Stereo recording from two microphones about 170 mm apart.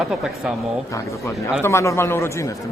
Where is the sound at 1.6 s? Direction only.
15° left (ahead or behind).